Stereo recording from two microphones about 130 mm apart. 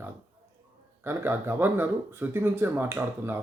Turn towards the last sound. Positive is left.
turn(degrees=-20)  # may be behind; listen again after turning